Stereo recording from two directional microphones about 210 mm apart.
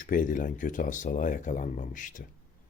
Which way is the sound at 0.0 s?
40° left (ahead or behind).